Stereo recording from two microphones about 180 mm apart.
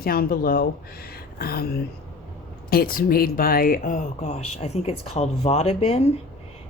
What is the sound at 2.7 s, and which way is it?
Speech, 55° left (ahead or behind).